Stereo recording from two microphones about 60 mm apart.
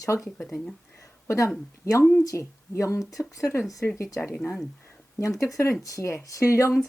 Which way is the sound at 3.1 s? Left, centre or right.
Left.